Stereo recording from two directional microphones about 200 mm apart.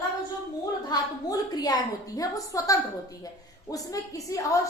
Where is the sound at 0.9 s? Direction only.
20° left (ahead or behind).